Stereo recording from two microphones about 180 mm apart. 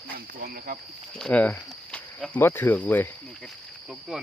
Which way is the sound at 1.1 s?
5° left (ahead or behind).